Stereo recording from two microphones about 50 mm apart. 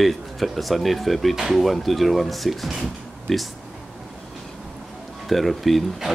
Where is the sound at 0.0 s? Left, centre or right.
Centre.